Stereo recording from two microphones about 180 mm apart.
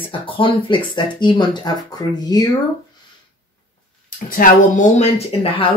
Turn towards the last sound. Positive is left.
turn(degrees=30)  # may be behind; listen again after turning